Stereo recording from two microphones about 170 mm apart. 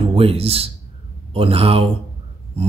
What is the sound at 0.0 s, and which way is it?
A man's voice, 35° right (ahead or behind).